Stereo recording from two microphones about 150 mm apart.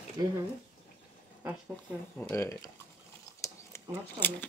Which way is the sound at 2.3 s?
20° left (ahead or behind).